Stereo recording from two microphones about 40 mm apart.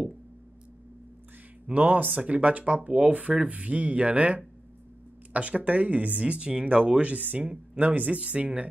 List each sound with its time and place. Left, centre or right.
1.7 s speech: right
2.1 s speech: right
7.8 s speech: right
8.2 s speech: right